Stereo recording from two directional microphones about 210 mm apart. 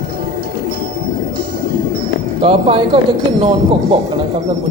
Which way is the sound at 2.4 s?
25° right (ahead or behind).